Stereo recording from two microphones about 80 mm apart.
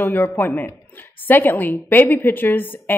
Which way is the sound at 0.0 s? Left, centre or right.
Left.